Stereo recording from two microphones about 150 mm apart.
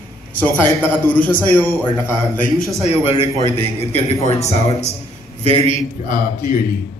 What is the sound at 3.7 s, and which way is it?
Speech, 50° left (ahead or behind).